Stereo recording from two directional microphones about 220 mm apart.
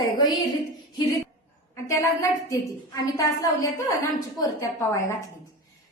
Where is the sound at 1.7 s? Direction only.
15° left (ahead or behind).